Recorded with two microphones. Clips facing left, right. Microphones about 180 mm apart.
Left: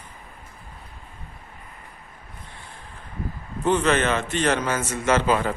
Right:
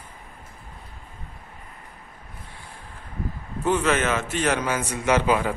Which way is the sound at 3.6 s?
5° right (ahead or behind).